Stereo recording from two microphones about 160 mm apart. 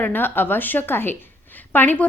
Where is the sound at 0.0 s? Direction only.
10° left (ahead or behind).